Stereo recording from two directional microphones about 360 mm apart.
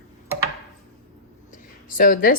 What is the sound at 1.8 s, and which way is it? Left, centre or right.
Speech, left.